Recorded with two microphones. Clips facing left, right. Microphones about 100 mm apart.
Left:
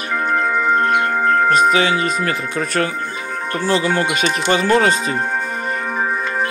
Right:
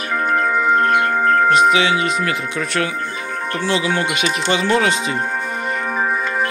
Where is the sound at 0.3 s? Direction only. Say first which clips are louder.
Right 1 dB; centre (ahead or behind).